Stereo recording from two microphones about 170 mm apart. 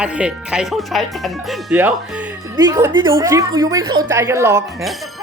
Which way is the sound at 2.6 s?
20° right (ahead or behind).